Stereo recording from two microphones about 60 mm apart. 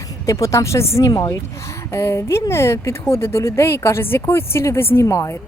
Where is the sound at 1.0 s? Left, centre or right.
Left.